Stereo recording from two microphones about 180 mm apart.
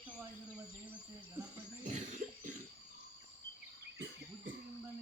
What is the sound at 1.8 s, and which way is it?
Cough, 40° right (ahead or behind).